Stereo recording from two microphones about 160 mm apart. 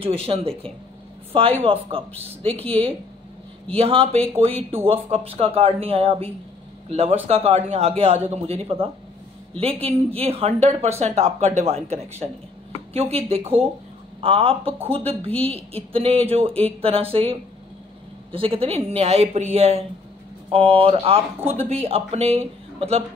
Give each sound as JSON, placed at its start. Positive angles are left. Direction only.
{"t": 0.0, "sound": "speech", "side_deg": -40}